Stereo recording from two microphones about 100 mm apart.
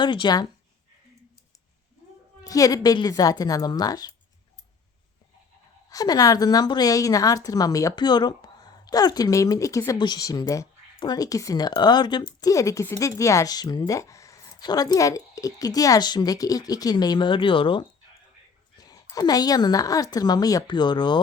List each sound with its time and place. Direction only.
0.0 s speech: 50° left (ahead or behind)
2.4 s a woman's voice: 35° left (ahead or behind)
5.9 s a woman's voice: 40° left (ahead or behind)
12.5 s a woman's voice: 35° left (ahead or behind)
14.6 s a woman's voice: 45° left (ahead or behind); by 17.8 s 60° left (ahead or behind)
18.8 s a woman's voice: 40° left (ahead or behind)
20.7 s speech: 50° left (ahead or behind)